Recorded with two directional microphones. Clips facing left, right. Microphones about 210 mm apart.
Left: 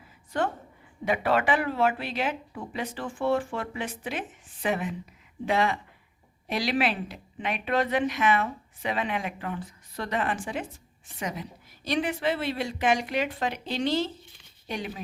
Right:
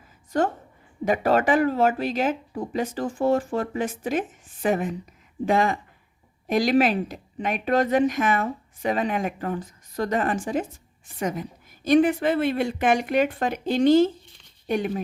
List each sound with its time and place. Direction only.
0.3 s a woman's voice: 40° right (ahead or behind)